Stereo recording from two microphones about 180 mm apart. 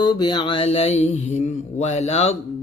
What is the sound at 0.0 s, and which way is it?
Mantra, 25° left (ahead or behind).